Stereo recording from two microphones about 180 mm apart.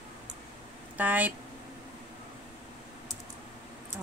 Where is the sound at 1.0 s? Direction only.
10° right (ahead or behind).